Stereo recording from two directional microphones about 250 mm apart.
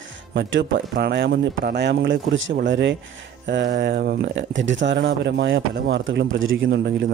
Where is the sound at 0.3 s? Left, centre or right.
Right.